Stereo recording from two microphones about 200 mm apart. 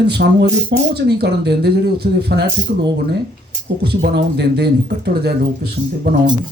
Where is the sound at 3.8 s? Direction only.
60° right (ahead or behind).